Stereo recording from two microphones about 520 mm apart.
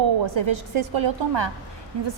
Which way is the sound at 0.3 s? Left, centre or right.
Right.